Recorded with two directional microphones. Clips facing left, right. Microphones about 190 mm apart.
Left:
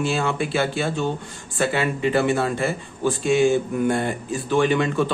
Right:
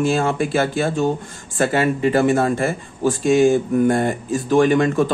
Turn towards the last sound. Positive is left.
turn(degrees=-45)  # may be behind; listen again after turning